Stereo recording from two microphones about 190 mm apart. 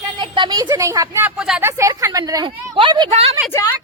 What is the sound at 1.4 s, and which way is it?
Speech, centre (ahead or behind).